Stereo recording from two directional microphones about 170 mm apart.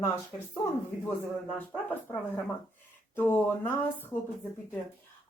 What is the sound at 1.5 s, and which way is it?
Speech, 10° left (ahead or behind).